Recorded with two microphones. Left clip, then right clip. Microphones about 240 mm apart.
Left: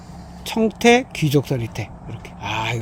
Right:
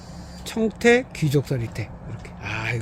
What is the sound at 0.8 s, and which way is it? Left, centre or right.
Speech, left.